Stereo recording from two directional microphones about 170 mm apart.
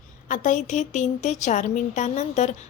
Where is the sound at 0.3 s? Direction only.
50° left (ahead or behind).